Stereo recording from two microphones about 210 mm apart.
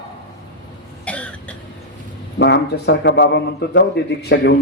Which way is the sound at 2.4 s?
55° left (ahead or behind).